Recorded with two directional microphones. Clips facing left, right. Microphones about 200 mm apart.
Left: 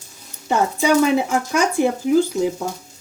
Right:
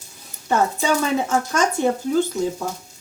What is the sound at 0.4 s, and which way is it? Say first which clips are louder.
Speech: left 2 dB; 15° left (ahead or behind).